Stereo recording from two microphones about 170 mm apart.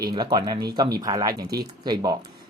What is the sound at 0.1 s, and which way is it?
Speech, 25° right (ahead or behind).